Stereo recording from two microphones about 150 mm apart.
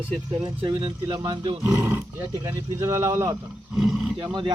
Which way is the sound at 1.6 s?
15° right (ahead or behind).